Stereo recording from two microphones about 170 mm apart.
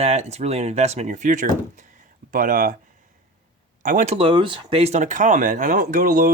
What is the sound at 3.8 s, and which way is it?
Speech, 45° right (ahead or behind).